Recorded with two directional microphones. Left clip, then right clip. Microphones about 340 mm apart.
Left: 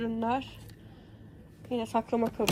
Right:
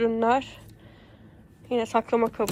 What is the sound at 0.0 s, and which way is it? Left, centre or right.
Speech, centre.